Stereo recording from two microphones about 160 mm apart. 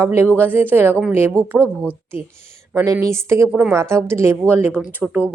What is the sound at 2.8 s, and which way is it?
Speech, 15° right (ahead or behind).